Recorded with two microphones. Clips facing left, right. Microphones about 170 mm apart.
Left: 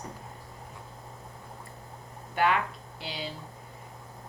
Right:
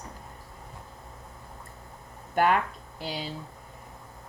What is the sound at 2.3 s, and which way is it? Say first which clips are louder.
Speech: right 3 dB; 45° right (ahead or behind).